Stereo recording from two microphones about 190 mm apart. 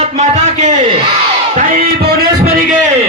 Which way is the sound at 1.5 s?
45° right (ahead or behind).